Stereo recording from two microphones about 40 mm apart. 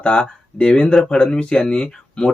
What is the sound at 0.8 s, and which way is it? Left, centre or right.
Speech, centre.